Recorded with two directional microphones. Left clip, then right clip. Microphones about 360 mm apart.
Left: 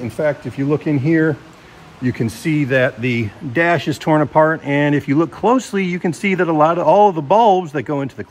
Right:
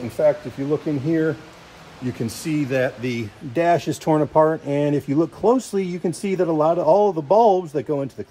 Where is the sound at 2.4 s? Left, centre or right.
Centre.